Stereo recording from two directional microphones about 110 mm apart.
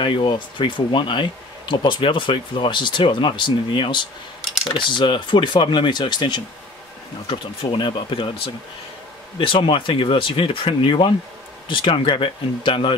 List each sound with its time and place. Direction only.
0.0 s speech: 50° left (ahead or behind)
9.4 s speech: 55° left (ahead or behind)